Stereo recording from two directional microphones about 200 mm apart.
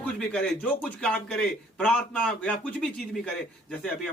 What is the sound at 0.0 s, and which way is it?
A man's voice, 5° left (ahead or behind).